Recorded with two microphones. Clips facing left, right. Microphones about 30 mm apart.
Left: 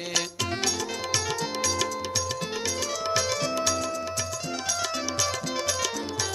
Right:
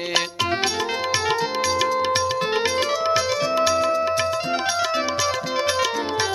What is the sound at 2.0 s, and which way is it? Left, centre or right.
Music, right.